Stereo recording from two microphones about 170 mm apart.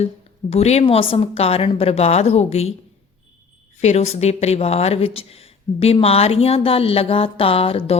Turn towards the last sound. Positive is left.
turn(degrees=35)  # may be behind; listen again after turning